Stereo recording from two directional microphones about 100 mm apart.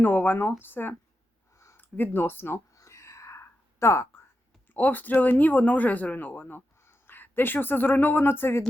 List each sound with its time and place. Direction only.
0.0 s speech: 20° left (ahead or behind)
1.5 s a sound: 25° left (ahead or behind)
4.7 s speech: 15° left (ahead or behind)